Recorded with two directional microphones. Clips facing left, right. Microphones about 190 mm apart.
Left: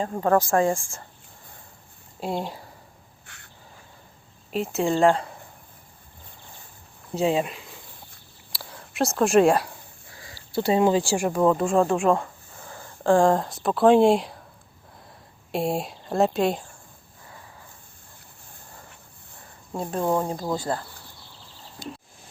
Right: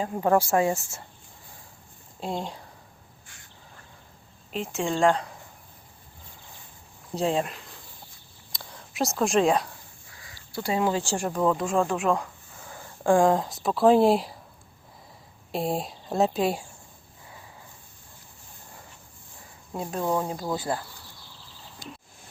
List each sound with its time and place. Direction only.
0.0 s a woman's voice: 10° right (ahead or behind)
2.2 s speech: 5° left (ahead or behind)
3.2 s bird: 65° left (ahead or behind)
4.5 s speech: 5° left (ahead or behind)
7.2 s speech: 5° left (ahead or behind)
8.5 s a sound: centre (ahead or behind)
10.2 s a sound: 30° left (ahead or behind)
10.9 s speech: 15° left (ahead or behind); by 14.3 s centre (ahead or behind)
15.5 s speech: centre (ahead or behind)
19.7 s speech: centre (ahead or behind)
20.0 s speech: 10° left (ahead or behind)
20.7 s a woman's voice: 15° right (ahead or behind)